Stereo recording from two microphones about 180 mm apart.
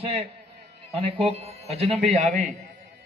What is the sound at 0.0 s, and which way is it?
Speech, 30° right (ahead or behind).